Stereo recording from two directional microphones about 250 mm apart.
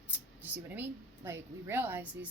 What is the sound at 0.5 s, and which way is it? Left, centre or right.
A woman's voice, centre.